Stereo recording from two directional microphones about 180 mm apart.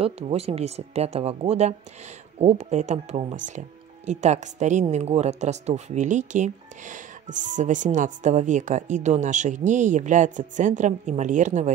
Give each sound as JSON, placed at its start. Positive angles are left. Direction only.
{"t": 0.0, "sound": "speech", "side_deg": -35}